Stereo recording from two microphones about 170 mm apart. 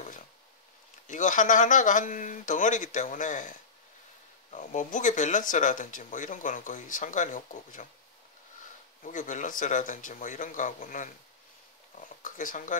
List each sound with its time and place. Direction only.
1.0 s speech: 50° left (ahead or behind)
9.0 s speech: 50° left (ahead or behind)
12.2 s speech: 50° left (ahead or behind)